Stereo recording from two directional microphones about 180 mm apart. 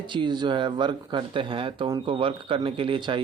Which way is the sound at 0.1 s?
25° right (ahead or behind).